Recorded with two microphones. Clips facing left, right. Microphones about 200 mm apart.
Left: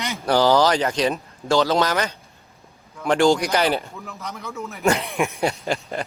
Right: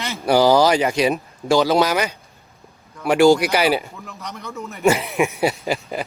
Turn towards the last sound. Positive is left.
turn(degrees=-5)  # may be behind; listen again after turning